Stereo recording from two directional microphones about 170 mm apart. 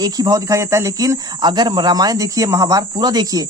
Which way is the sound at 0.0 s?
20° right (ahead or behind).